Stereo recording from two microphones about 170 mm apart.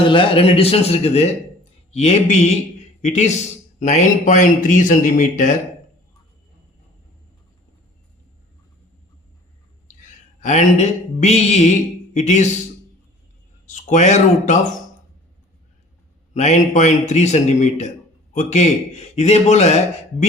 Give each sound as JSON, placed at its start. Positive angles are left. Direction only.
{"t": 0.0, "sound": "a man's voice", "side_deg": 30}
{"t": 9.9, "sound": "speech", "side_deg": 45}
{"t": 13.7, "sound": "speech", "side_deg": 45}
{"t": 16.3, "sound": "a man's voice", "side_deg": 45}